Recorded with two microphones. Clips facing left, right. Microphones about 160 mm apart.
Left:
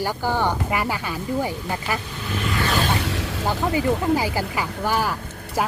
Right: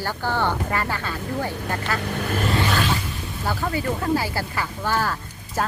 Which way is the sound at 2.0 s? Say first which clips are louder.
Right 4 dB; 60° right (ahead or behind).